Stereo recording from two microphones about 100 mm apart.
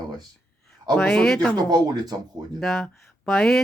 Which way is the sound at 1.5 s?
40° right (ahead or behind).